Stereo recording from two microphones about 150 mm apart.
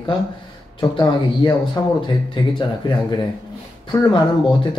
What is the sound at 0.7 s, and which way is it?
Speech, 30° left (ahead or behind).